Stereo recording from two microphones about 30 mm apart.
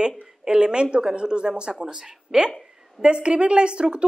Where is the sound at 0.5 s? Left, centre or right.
Right.